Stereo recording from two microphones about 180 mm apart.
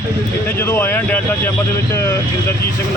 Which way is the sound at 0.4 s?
10° left (ahead or behind).